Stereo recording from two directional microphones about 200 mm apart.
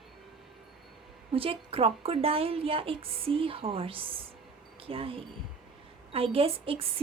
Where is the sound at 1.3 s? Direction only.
30° right (ahead or behind).